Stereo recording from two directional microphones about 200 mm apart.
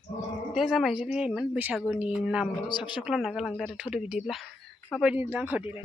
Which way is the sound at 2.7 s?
20° left (ahead or behind).